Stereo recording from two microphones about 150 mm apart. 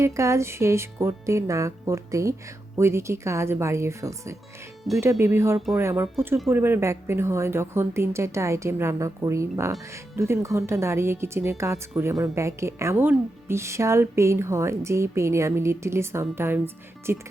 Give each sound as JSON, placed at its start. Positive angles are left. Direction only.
{"t": 0.0, "sound": "a woman's voice", "side_deg": -20}